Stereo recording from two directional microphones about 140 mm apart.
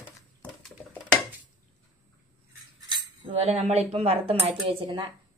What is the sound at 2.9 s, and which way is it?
Speech, 45° right (ahead or behind).